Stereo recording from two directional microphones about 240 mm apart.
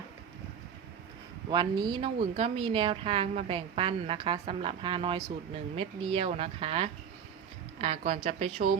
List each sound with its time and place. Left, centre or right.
1.5 s speech: centre